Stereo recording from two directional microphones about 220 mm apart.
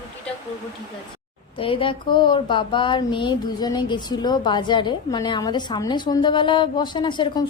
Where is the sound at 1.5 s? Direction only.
25° left (ahead or behind).